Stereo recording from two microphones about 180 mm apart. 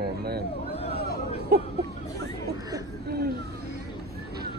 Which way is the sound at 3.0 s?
65° right (ahead or behind).